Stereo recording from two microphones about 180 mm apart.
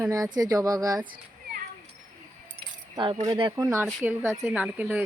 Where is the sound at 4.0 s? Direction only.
10° right (ahead or behind).